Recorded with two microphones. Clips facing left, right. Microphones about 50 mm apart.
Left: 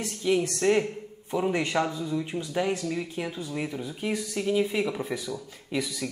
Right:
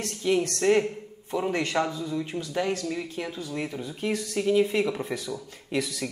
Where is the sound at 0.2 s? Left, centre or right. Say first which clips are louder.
Right 1 dB; centre.